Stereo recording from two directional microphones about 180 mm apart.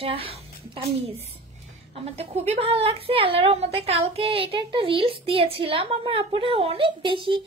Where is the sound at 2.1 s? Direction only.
35° right (ahead or behind).